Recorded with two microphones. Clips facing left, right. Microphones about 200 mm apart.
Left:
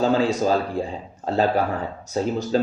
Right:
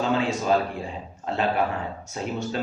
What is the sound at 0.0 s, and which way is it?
A man's voice, 35° left (ahead or behind).